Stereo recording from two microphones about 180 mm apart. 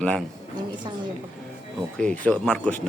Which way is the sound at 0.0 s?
5° left (ahead or behind).